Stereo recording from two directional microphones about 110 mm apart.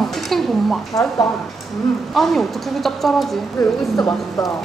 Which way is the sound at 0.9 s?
30° left (ahead or behind).